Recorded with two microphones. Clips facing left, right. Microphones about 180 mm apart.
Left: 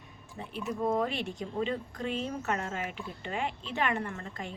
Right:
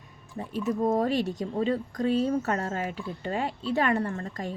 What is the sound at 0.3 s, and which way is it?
Speech, 45° right (ahead or behind).